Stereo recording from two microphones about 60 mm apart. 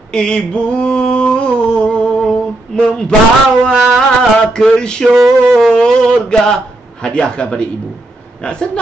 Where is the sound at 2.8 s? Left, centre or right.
Centre.